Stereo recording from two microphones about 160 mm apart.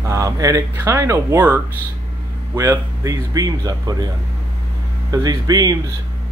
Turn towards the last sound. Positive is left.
turn(degrees=-25)  # may be behind; listen again after turning